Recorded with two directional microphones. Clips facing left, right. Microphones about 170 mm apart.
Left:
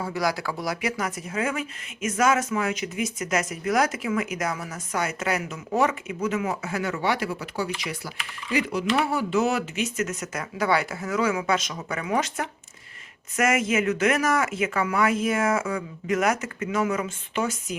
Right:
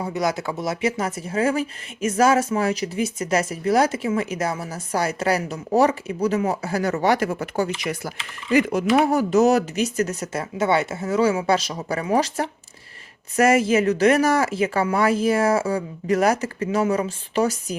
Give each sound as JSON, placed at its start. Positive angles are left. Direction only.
{"t": 0.0, "sound": "speech", "side_deg": -20}
{"t": 9.0, "sound": "speech", "side_deg": -45}